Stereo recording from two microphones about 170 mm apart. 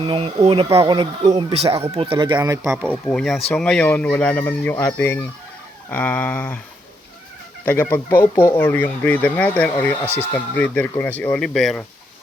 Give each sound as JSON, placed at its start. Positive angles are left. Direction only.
{"t": 0.0, "sound": "speech", "side_deg": -30}
{"t": 2.9, "sound": "speech", "side_deg": 5}
{"t": 7.6, "sound": "speech", "side_deg": 10}